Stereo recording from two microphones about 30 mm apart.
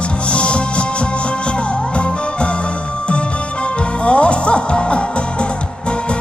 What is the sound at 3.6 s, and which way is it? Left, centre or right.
Music, left.